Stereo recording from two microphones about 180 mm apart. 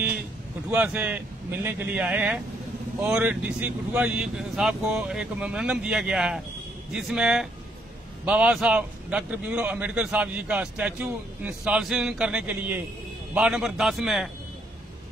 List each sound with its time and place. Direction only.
0.7 s a man's voice: 10° right (ahead or behind)